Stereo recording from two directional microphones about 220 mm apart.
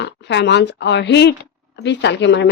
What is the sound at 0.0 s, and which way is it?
Speech, 50° left (ahead or behind).